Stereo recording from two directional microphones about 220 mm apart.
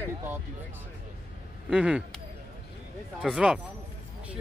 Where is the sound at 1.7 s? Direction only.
5° right (ahead or behind).